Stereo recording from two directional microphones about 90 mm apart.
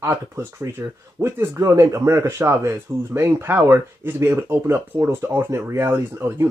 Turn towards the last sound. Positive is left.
turn(degrees=-25)  # may be behind; listen again after turning